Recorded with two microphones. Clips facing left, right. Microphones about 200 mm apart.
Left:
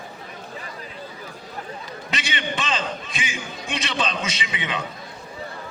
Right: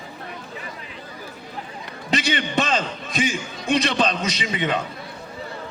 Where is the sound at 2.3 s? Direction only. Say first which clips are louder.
Right 3 dB; 55° right (ahead or behind).